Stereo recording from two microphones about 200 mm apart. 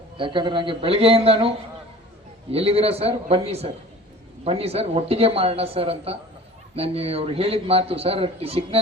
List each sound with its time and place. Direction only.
0.2 s a man's voice: 25° right (ahead or behind)
2.5 s a man's voice: 30° right (ahead or behind)